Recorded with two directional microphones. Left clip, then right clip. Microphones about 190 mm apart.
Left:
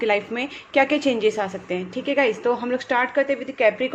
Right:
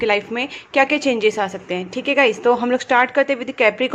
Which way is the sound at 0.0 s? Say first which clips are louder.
Right 3 dB; 20° right (ahead or behind).